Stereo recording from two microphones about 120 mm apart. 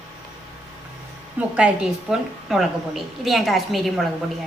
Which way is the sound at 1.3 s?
10° right (ahead or behind).